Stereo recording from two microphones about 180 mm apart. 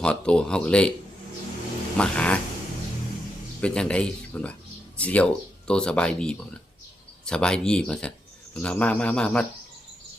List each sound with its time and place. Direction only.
0.0 s speech: 5° left (ahead or behind)
2.0 s speech: 5° left (ahead or behind)
3.6 s speech: 5° left (ahead or behind)